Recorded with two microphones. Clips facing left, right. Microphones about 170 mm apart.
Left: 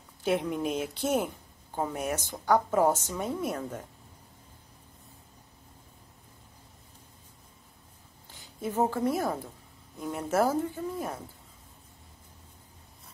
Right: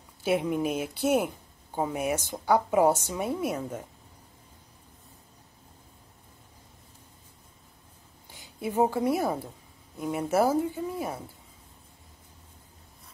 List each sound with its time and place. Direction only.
0.2 s a woman's voice: 5° right (ahead or behind)
8.5 s a woman's voice: 10° right (ahead or behind)